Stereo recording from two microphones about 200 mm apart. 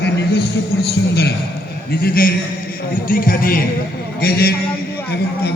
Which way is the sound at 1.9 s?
50° left (ahead or behind).